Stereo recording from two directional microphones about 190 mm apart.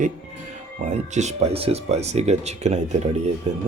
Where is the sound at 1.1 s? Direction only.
35° right (ahead or behind).